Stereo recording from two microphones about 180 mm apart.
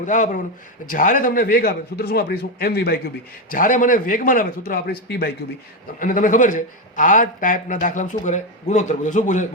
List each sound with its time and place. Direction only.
0.0 s a man's voice: 45° left (ahead or behind); by 3.0 s 60° left (ahead or behind)
3.5 s speech: 50° left (ahead or behind)
6.0 s speech: 50° left (ahead or behind)